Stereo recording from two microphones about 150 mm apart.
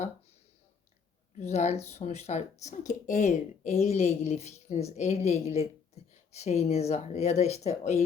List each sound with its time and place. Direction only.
1.4 s speech: 45° left (ahead or behind)